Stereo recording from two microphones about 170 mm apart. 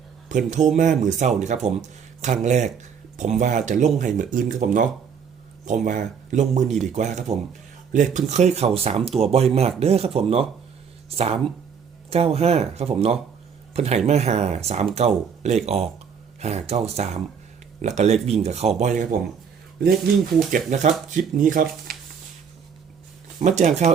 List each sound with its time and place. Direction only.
0.3 s speech: 45° right (ahead or behind)
12.1 s speech: 35° right (ahead or behind)
20.5 s speech: 45° right (ahead or behind)
23.4 s speech: 45° right (ahead or behind)